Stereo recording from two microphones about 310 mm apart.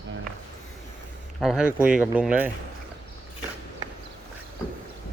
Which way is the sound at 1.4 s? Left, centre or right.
Centre.